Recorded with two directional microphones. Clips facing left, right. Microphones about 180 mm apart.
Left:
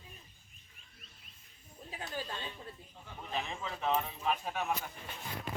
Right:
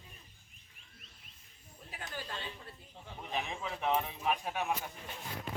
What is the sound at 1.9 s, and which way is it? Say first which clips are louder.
Speech: left 2 dB; 20° left (ahead or behind).